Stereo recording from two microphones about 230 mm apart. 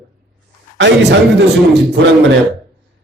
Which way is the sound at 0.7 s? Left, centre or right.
Right.